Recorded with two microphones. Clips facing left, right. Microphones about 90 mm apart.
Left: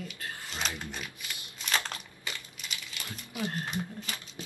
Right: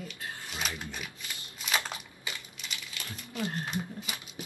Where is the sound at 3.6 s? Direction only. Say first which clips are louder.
Even; centre (ahead or behind).